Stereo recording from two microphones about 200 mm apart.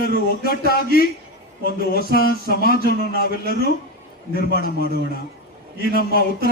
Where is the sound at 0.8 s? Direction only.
50° left (ahead or behind).